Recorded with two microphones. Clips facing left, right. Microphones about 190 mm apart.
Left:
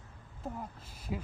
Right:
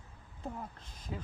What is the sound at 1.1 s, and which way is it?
Speech, 10° left (ahead or behind).